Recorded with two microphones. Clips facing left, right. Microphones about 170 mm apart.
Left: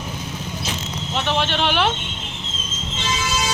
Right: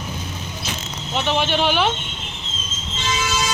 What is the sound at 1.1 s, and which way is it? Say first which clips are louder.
Speech: right 2 dB; centre (ahead or behind).